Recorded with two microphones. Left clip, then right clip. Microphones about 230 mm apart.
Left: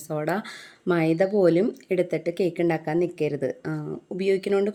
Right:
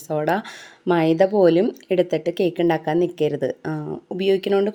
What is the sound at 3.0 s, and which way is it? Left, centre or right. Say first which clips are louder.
Speech: right 5 dB; right.